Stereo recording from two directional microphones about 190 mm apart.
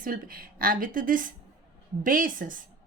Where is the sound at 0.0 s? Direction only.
50° right (ahead or behind).